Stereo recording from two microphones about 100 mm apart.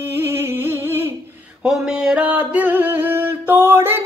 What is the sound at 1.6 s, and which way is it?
Music, 10° right (ahead or behind).